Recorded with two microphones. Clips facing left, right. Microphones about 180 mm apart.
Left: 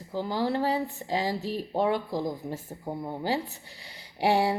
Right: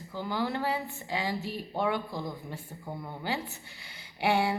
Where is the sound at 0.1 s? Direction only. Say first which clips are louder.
Left 4 dB; 35° left (ahead or behind).